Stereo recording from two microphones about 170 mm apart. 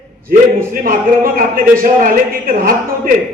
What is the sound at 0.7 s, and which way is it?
A man's voice, 55° right (ahead or behind).